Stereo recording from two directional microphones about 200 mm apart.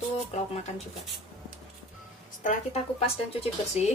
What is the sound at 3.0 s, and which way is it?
Speech, 30° left (ahead or behind).